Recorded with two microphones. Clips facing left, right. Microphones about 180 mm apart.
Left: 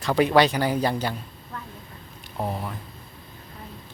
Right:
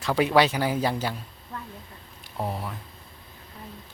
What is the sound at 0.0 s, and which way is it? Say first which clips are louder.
Speech: left 2 dB; 5° right (ahead or behind).